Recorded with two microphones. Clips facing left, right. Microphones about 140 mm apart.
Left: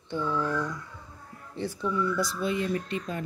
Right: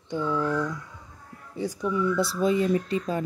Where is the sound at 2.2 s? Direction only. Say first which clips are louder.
Right 6 dB; 35° right (ahead or behind).